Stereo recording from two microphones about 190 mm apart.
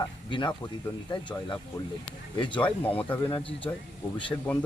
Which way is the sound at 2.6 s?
10° left (ahead or behind).